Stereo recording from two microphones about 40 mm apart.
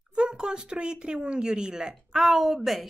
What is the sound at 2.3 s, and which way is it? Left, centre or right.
Speech, centre.